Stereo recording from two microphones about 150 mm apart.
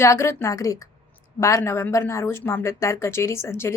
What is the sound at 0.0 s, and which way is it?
A woman's voice, 20° left (ahead or behind).